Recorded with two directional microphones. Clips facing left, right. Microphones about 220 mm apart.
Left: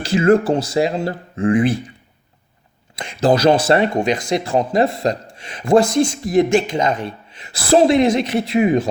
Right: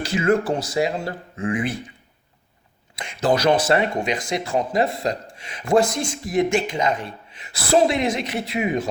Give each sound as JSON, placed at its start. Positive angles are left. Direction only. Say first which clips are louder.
{"t": 0.0, "sound": "speech", "louder": "left 6 dB", "side_deg": 30}
{"t": 3.0, "sound": "speech", "louder": "left 5 dB", "side_deg": 30}